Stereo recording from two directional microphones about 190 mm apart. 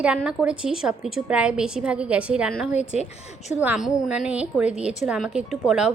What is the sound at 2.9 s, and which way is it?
Speech, 35° left (ahead or behind).